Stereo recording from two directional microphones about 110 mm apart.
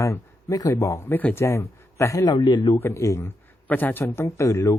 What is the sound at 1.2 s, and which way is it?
Speech, 15° left (ahead or behind).